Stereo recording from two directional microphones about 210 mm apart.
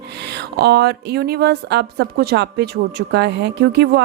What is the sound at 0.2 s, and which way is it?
A woman's voice, 50° right (ahead or behind).